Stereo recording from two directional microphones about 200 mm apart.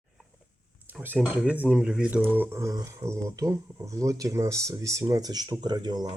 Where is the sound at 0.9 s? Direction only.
10° right (ahead or behind).